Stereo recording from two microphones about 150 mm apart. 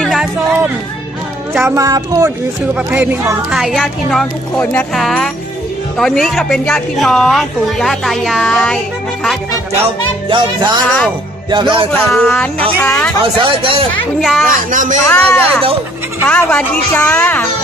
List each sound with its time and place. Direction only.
0.0 s a sound: centre (ahead or behind)
1.6 s speech: 25° right (ahead or behind)
2.7 s speech: 10° right (ahead or behind)
3.6 s a woman's voice: centre (ahead or behind)
9.7 s music: 35° right (ahead or behind)
10.8 s a woman's voice: 5° left (ahead or behind)
11.5 s music: 35° right (ahead or behind)
11.9 s a woman's voice: 15° left (ahead or behind)
13.4 s music: 35° right (ahead or behind)
14.2 s a woman's voice: centre (ahead or behind)
14.7 s a man's voice: 55° right (ahead or behind)
15.1 s a woman's voice: 10° left (ahead or behind)